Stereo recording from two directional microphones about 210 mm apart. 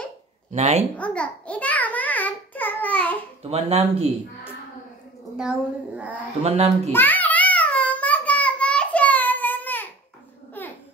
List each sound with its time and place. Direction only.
0.5 s speech: 30° right (ahead or behind)
0.9 s a sound: 5° left (ahead or behind)
3.4 s speech: 30° right (ahead or behind)
5.4 s a woman's voice: 5° right (ahead or behind)
6.4 s speech: 30° right (ahead or behind)
6.9 s child singing: 10° left (ahead or behind)
10.6 s a sound: 10° left (ahead or behind)